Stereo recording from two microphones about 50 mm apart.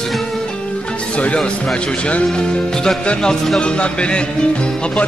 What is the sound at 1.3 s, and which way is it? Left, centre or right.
A man's voice, centre.